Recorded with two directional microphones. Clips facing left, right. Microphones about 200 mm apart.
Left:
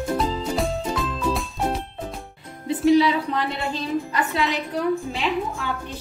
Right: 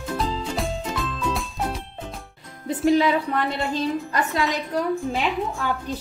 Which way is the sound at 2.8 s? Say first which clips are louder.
Left 2 dB; 45° right (ahead or behind).